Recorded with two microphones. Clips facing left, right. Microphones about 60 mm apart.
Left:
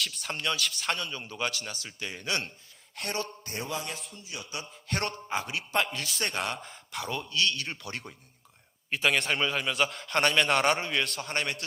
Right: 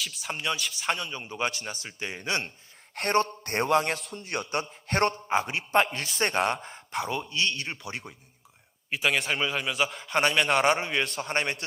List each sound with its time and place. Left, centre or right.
0.0 s speech: centre; by 2.5 s right
2.9 s a man's voice: right